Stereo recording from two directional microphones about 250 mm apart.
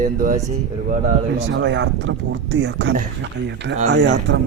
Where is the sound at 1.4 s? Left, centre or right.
Right.